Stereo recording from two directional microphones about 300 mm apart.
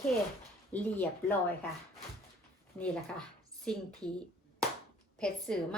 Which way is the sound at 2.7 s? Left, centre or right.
Centre.